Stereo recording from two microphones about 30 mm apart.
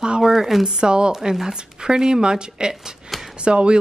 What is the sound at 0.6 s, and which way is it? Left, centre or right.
Speech, right.